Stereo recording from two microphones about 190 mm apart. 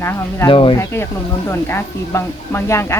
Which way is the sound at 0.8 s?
15° left (ahead or behind).